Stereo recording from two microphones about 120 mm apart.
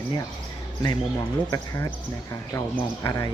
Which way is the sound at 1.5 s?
25° left (ahead or behind).